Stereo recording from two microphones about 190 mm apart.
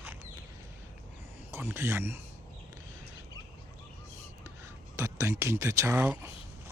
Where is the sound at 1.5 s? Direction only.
15° right (ahead or behind).